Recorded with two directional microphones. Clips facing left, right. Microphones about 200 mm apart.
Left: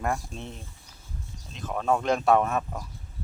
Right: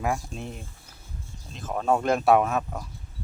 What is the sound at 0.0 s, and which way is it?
Speech, 5° right (ahead or behind).